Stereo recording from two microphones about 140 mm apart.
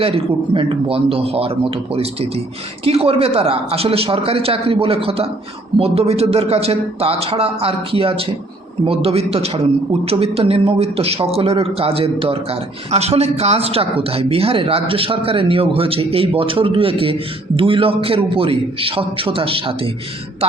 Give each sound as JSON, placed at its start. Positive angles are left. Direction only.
{"t": 0.0, "sound": "a man's voice", "side_deg": -40}